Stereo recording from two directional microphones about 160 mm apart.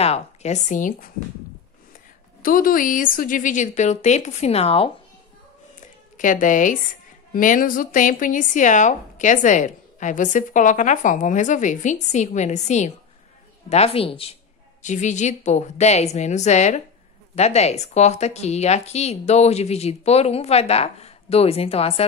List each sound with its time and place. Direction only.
0.0 s speech: 45° left (ahead or behind); by 1.1 s 60° left (ahead or behind)
2.4 s speech: 60° left (ahead or behind); by 4.9 s 35° left (ahead or behind)
5.8 s a sound: 55° left (ahead or behind)
7.3 s a woman's voice: 55° left (ahead or behind); by 14.3 s 35° left (ahead or behind)
14.8 s speech: 50° left (ahead or behind)